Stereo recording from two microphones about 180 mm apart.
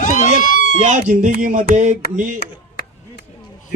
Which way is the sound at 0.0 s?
45° left (ahead or behind).